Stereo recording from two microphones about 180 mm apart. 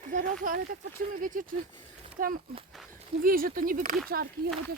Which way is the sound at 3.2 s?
50° right (ahead or behind).